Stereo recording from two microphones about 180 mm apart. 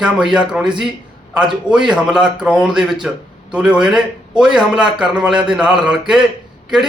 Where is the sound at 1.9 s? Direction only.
5° right (ahead or behind).